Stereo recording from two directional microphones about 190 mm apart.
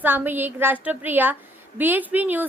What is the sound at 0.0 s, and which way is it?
A woman's voice, 10° right (ahead or behind).